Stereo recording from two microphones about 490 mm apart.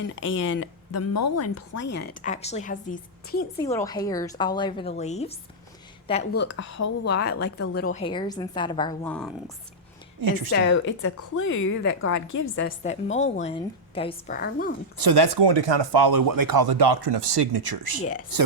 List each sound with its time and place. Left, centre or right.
0.2 s a woman's voice: left
7.1 s a woman's voice: centre
10.2 s speech: right
10.5 s speech: left
12.1 s a woman's voice: left
12.5 s a woman's voice: centre
14.9 s speech: right